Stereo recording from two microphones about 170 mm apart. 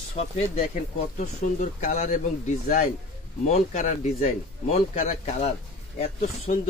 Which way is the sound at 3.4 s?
45° left (ahead or behind).